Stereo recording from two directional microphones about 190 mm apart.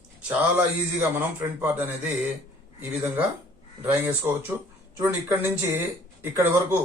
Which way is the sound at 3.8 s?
10° right (ahead or behind).